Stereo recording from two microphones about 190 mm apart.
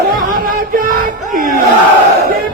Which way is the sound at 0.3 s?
50° right (ahead or behind).